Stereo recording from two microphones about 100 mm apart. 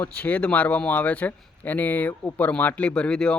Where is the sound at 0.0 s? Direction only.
15° left (ahead or behind).